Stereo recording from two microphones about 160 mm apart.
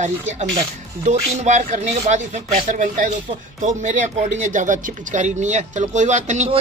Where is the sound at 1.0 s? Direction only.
50° right (ahead or behind).